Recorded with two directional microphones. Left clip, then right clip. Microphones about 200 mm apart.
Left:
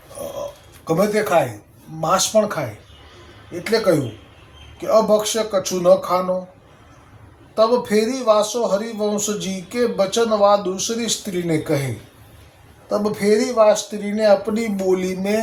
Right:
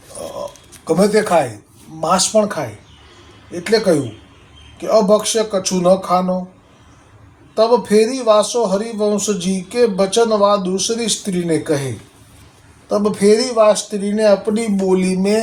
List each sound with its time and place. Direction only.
0.9 s speech: 15° right (ahead or behind)
4.8 s speech: 15° right (ahead or behind)
7.5 s speech: 15° right (ahead or behind)
12.9 s speech: 15° right (ahead or behind)